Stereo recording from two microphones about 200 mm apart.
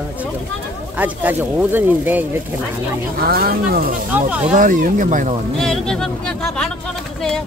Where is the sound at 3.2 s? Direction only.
50° right (ahead or behind).